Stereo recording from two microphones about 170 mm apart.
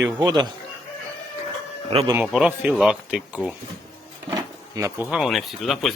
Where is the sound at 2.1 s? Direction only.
5° right (ahead or behind).